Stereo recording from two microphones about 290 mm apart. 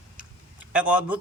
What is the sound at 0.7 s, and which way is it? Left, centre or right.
Speech, centre.